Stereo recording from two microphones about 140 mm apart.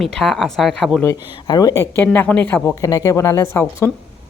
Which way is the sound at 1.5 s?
30° left (ahead or behind).